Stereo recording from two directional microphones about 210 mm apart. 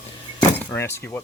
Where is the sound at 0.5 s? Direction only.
10° left (ahead or behind).